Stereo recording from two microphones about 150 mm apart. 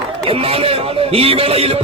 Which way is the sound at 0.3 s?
40° right (ahead or behind).